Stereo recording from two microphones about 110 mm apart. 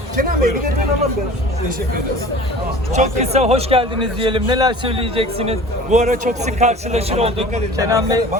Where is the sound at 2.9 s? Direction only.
75° right (ahead or behind); by 4.9 s 45° right (ahead or behind).